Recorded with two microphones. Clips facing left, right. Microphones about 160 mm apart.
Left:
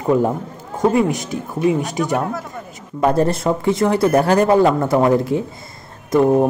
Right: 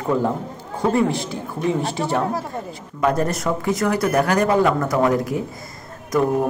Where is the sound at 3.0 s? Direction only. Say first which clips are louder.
Left 4 dB; 30° left (ahead or behind).